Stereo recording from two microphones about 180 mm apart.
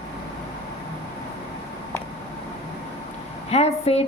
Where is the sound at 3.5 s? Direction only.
35° left (ahead or behind).